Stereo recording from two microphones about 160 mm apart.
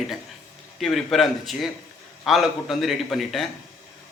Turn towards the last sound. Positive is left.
turn(degrees=0)  # may be behind; listen again after turning